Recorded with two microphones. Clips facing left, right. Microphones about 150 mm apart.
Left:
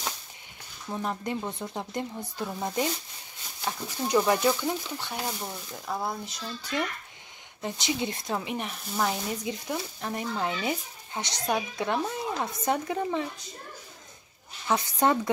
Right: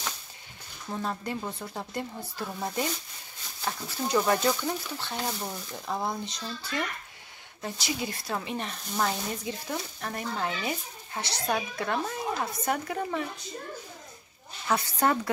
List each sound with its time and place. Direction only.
0.9 s speech: 15° left (ahead or behind)
5.4 s speech: 5° right (ahead or behind)
7.6 s speech: 20° left (ahead or behind)
14.7 s speech: 20° left (ahead or behind)